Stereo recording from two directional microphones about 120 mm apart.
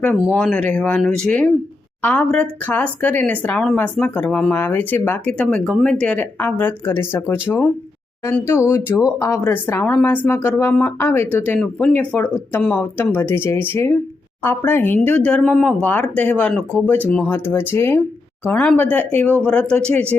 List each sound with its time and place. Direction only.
0.3 s a woman's voice: 10° left (ahead or behind)